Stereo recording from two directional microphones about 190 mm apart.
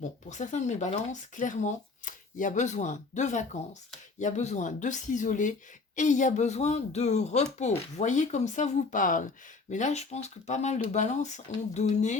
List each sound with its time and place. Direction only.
0.3 s speech: 40° left (ahead or behind)